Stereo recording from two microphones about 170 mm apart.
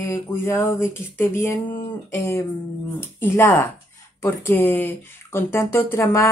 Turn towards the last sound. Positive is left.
turn(degrees=15)  # may be behind; listen again after turning